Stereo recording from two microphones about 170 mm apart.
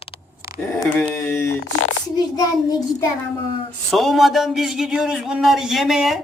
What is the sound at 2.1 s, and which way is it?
Child singing, 20° left (ahead or behind).